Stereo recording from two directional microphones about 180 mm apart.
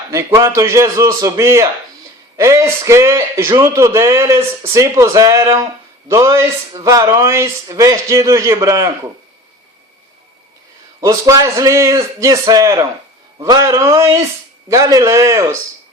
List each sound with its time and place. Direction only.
0.1 s speech: 15° right (ahead or behind)
11.0 s speech: 15° right (ahead or behind)